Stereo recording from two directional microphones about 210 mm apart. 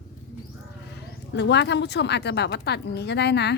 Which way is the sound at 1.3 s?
55° left (ahead or behind).